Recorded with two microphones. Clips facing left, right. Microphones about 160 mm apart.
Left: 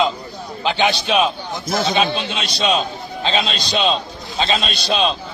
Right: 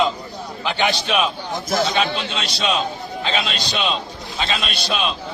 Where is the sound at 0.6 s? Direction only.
20° left (ahead or behind).